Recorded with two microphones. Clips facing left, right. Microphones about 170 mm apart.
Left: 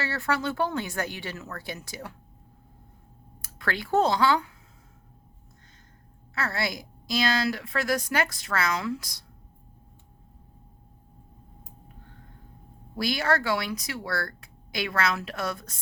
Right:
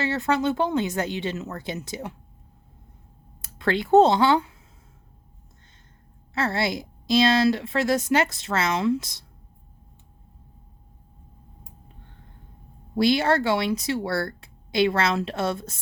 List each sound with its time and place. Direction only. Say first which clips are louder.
0.0 s a woman's voice: right 5 dB; 20° right (ahead or behind)
3.4 s speech: right 7 dB; 25° right (ahead or behind)
6.3 s a woman's voice: right 5 dB; 25° right (ahead or behind)
13.0 s a woman's voice: right 6 dB; 25° right (ahead or behind)